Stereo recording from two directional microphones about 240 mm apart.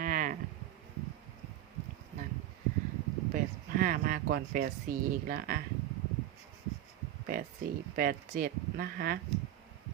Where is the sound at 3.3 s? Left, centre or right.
Right.